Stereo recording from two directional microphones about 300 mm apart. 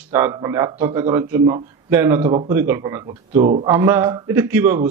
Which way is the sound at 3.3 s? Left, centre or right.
Right.